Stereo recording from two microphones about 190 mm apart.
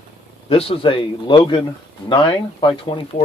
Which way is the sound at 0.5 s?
30° left (ahead or behind).